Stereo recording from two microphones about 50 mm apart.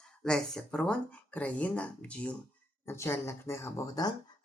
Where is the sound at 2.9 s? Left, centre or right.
Left.